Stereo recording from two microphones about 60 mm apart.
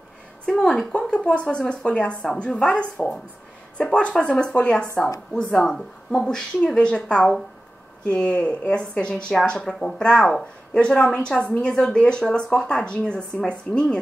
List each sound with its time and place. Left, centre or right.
0.5 s a woman's voice: centre
9.3 s a woman's voice: centre